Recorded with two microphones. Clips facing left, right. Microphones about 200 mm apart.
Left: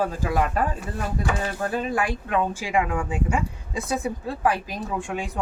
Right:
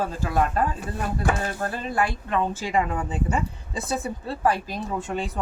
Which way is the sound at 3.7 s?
30° right (ahead or behind).